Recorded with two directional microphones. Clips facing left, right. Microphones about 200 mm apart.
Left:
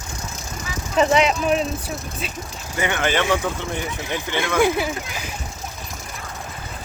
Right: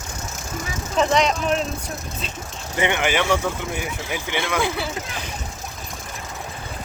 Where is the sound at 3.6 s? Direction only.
10° right (ahead or behind).